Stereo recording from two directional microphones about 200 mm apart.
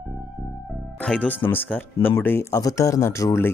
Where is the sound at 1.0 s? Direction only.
5° left (ahead or behind).